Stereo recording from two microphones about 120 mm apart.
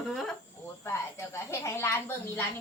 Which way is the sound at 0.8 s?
20° left (ahead or behind).